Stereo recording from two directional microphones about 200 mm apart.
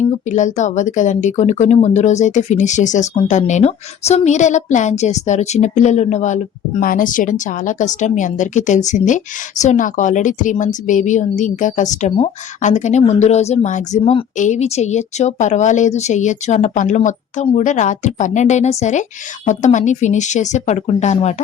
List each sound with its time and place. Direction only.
0.3 s speech: 35° left (ahead or behind)